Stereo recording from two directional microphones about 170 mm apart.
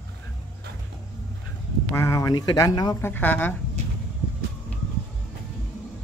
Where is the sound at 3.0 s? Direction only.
10° left (ahead or behind).